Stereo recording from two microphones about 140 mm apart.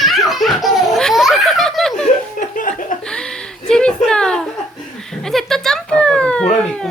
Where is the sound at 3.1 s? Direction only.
5° left (ahead or behind).